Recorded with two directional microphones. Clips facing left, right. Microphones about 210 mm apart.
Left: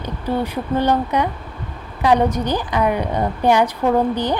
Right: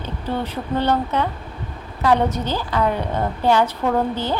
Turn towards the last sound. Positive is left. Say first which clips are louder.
# left 3 dB
turn(degrees=15)  # may be behind; listen again after turning